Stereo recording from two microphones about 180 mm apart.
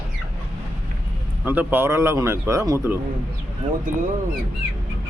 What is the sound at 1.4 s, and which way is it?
Speech, 10° right (ahead or behind).